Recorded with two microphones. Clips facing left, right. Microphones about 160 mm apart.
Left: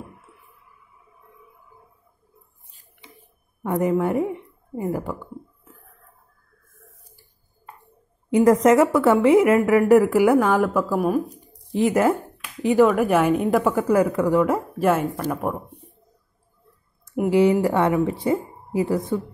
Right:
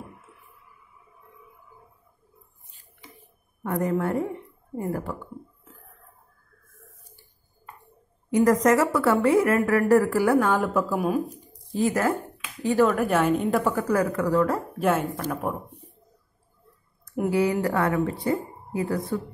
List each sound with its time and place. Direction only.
3.6 s a woman's voice: 15° left (ahead or behind)
4.0 s a sound: 15° left (ahead or behind)
8.3 s a woman's voice: 25° left (ahead or behind)
10.4 s speech: 10° left (ahead or behind)
11.8 s a woman's voice: 25° left (ahead or behind)
14.8 s speech: 5° left (ahead or behind)
17.3 s a woman's voice: 20° left (ahead or behind)